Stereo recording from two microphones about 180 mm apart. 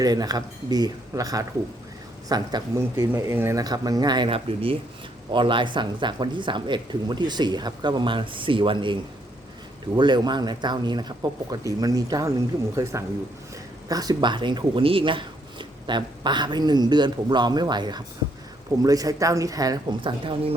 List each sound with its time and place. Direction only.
0.0 s speech: 20° right (ahead or behind)